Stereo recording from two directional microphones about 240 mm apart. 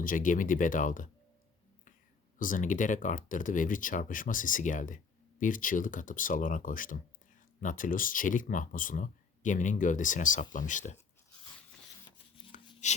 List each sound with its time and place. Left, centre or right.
0.0 s speech: left
2.4 s speech: left
12.5 s a sound: left